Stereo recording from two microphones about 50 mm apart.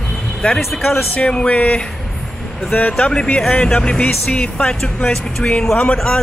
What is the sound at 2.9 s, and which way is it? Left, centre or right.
A man's voice, centre.